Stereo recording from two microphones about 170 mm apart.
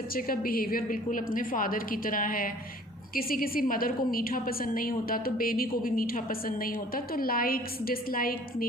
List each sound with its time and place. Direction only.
0.1 s a woman's voice: 60° left (ahead or behind)